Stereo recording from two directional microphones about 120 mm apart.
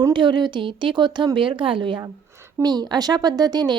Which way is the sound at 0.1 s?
40° right (ahead or behind).